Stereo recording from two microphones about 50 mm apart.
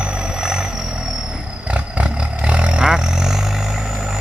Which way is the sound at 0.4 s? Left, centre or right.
Centre.